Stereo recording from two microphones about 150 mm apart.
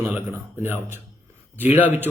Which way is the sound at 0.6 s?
15° right (ahead or behind).